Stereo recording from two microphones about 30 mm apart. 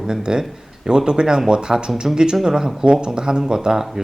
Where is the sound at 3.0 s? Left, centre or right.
Right.